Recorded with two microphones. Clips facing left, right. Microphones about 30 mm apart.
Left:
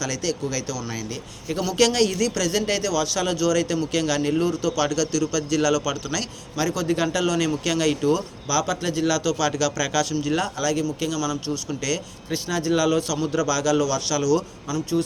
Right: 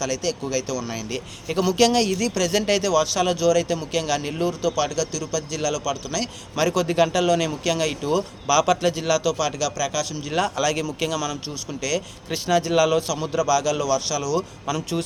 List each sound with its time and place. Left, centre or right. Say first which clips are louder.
0.0 s speech: right 1 dB; right
1.7 s a man's voice: even; centre
2.3 s a man's voice: right 2 dB; right
2.6 s a man's voice: right 5 dB; right; by 6.0 s centre
6.6 s speech: right 4 dB; right
6.8 s speech: right 1 dB; right
7.3 s a man's voice: even; centre
8.1 s speech: right 3 dB; right; by 10.2 s centre
10.4 s a man's voice: right 1 dB; right
13.1 s a man's voice: right 1 dB; centre
14.7 s speech: left 2 dB; right